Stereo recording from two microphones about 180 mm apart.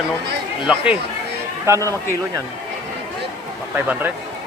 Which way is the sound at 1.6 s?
15° right (ahead or behind).